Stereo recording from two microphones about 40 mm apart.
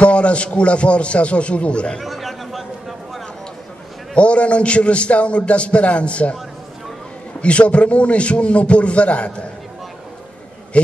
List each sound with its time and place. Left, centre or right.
0.0 s a man's voice: left
2.0 s chatter: centre
4.1 s a man's voice: left
7.4 s a man's voice: left